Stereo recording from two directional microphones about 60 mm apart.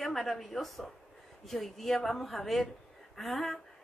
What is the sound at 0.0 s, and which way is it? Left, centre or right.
A woman's voice, centre.